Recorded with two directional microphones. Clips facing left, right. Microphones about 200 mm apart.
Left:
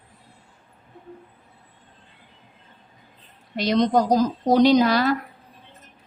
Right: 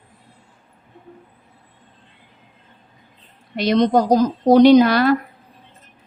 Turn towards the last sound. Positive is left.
turn(degrees=-65)  # may be behind; listen again after turning